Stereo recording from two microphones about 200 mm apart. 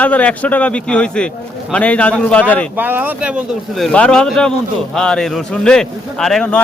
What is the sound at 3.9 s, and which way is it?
A man's voice, 5° left (ahead or behind).